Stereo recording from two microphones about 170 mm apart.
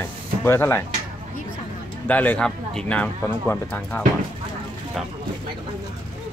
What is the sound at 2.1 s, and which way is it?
Speech, 10° left (ahead or behind).